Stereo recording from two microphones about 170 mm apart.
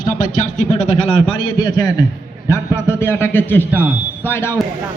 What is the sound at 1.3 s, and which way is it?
A man's voice, 25° left (ahead or behind).